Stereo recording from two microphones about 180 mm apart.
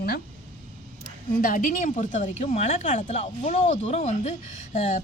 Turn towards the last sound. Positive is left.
turn(degrees=40)  # may be behind; listen again after turning